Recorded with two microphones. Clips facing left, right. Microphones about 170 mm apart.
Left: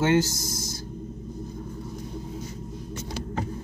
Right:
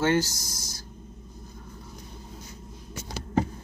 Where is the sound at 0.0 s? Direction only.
20° left (ahead or behind).